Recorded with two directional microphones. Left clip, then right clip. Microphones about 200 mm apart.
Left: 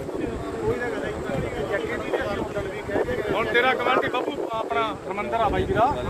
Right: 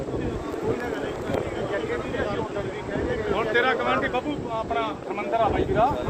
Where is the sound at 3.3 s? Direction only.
55° right (ahead or behind).